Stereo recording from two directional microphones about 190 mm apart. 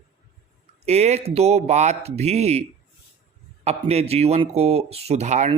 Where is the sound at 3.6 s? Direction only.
35° right (ahead or behind).